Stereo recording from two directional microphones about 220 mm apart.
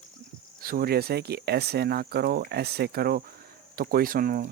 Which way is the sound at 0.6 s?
45° right (ahead or behind).